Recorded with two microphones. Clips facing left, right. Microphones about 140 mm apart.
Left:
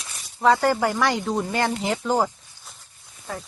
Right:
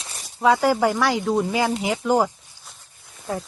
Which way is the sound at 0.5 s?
10° right (ahead or behind).